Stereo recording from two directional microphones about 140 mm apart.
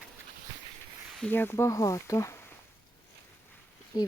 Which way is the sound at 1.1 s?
5° left (ahead or behind).